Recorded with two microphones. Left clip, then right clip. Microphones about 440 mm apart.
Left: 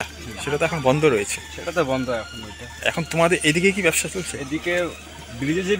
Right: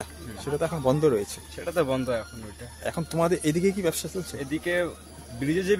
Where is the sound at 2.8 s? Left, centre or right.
Right.